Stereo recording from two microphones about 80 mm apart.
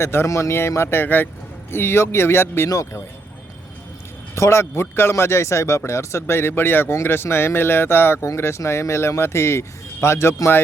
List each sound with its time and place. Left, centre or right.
0.0 s speech: left
4.4 s speech: left